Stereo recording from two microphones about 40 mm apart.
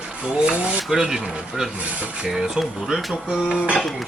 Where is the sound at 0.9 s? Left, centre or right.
Centre.